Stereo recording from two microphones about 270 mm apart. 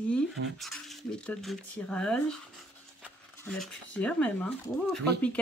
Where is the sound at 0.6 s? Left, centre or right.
Centre.